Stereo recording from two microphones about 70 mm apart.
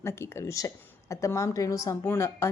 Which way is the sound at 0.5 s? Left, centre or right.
Left.